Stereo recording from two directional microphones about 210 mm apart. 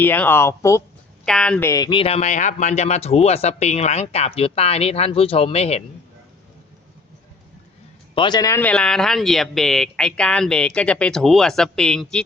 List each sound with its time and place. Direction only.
0.0 s speech: 10° left (ahead or behind); by 5.8 s 30° left (ahead or behind)
8.1 s speech: 20° left (ahead or behind); by 12.2 s 5° left (ahead or behind)